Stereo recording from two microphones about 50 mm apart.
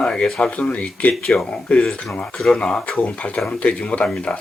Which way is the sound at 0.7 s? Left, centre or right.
Left.